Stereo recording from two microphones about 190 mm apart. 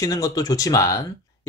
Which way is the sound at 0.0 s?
20° left (ahead or behind).